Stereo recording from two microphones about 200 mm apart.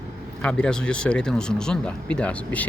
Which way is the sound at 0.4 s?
5° left (ahead or behind).